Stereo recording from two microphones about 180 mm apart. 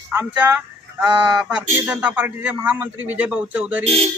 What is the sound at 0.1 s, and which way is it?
A man's voice, 15° right (ahead or behind).